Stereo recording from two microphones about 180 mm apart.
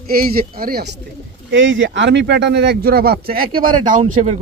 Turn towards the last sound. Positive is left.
turn(degrees=-40)  # may be behind; listen again after turning